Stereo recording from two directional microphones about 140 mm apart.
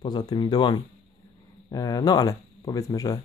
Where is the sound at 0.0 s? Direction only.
35° left (ahead or behind).